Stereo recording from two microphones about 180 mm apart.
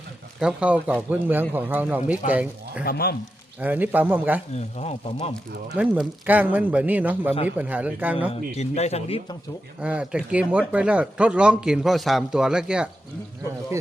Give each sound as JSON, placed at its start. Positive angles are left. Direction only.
{"t": 0.3, "sound": "a man's voice", "side_deg": -5}
{"t": 2.8, "sound": "speech", "side_deg": 60}
{"t": 3.6, "sound": "a man's voice", "side_deg": -10}
{"t": 4.5, "sound": "speech", "side_deg": 35}
{"t": 5.7, "sound": "a man's voice", "side_deg": -5}
{"t": 8.3, "sound": "speech", "side_deg": 35}
{"t": 9.8, "sound": "speech", "side_deg": -5}